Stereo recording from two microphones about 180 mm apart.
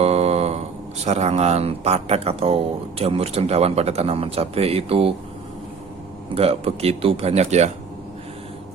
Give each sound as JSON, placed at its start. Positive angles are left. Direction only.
{"t": 0.0, "sound": "a sound", "side_deg": -35}
{"t": 1.0, "sound": "speech", "side_deg": -35}
{"t": 6.3, "sound": "speech", "side_deg": -35}